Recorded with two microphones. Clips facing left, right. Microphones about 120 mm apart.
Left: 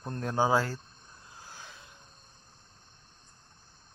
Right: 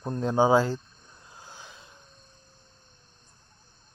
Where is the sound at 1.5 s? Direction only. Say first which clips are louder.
Right 1 dB; 20° right (ahead or behind).